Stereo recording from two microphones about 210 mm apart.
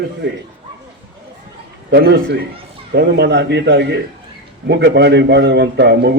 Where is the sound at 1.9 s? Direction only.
50° right (ahead or behind).